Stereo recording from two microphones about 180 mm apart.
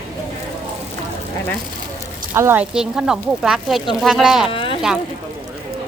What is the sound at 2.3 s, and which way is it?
Speech, 15° right (ahead or behind).